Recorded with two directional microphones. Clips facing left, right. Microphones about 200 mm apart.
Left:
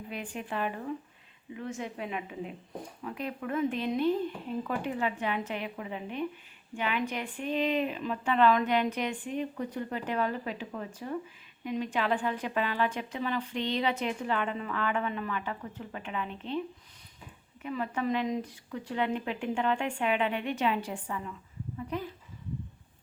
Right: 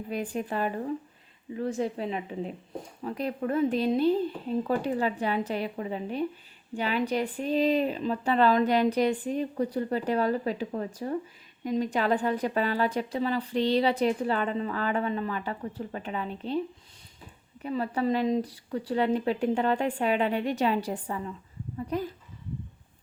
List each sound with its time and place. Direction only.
0.1 s a woman's voice: 40° right (ahead or behind)
17.6 s a woman's voice: 35° right (ahead or behind)